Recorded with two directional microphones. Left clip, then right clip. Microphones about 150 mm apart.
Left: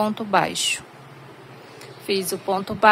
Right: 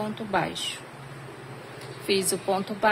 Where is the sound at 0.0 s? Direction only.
50° left (ahead or behind).